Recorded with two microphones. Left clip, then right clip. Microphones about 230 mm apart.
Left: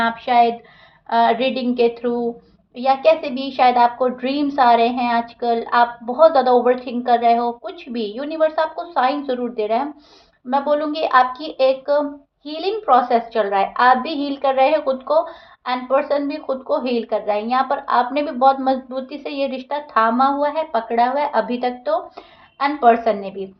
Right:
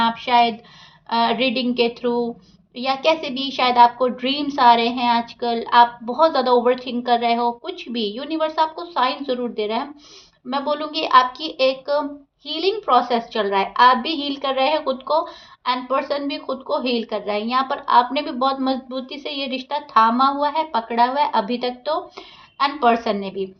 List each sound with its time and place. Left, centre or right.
0.0 s a woman's voice: right